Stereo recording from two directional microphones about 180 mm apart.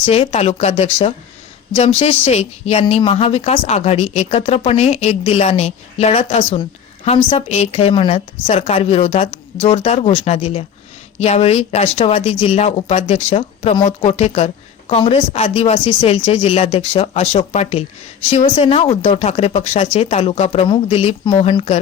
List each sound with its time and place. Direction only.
0.0 s speech: 35° left (ahead or behind)